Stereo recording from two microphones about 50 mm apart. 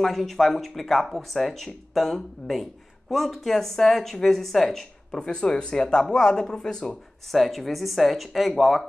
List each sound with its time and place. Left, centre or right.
0.0 s speech: centre
7.2 s speech: centre